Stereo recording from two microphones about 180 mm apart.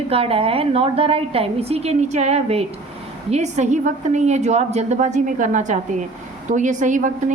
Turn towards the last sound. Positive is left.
turn(degrees=-45)  # may be behind; listen again after turning